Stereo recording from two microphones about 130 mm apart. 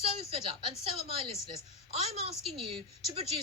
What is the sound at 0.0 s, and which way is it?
A woman's voice, 50° right (ahead or behind).